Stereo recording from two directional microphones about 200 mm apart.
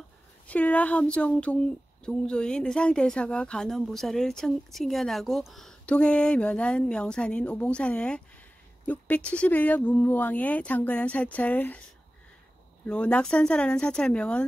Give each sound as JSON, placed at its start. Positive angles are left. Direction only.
{"t": 0.5, "sound": "speech", "side_deg": 5}
{"t": 12.8, "sound": "speech", "side_deg": 5}